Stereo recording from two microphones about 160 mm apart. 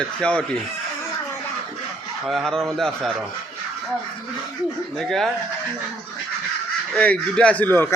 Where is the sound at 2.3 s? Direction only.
Centre (ahead or behind).